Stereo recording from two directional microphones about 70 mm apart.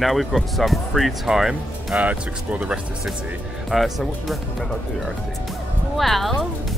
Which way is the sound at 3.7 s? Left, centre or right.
Centre.